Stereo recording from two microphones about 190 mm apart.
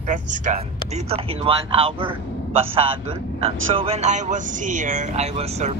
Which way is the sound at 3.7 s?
30° right (ahead or behind).